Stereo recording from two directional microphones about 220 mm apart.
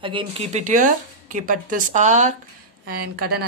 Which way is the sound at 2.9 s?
45° right (ahead or behind).